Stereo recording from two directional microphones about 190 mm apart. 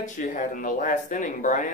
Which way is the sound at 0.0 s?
45° left (ahead or behind).